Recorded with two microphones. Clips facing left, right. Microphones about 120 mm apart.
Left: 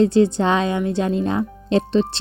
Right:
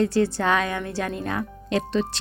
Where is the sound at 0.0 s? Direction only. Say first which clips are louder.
Left 6 dB; 20° left (ahead or behind).